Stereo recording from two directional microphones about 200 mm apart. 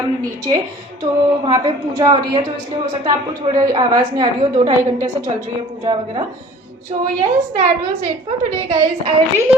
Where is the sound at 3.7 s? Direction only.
20° right (ahead or behind).